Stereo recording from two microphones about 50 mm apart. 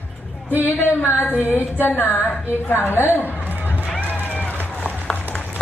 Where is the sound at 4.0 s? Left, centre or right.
Left.